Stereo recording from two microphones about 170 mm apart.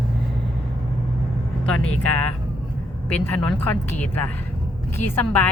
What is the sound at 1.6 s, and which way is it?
Speech, 5° left (ahead or behind).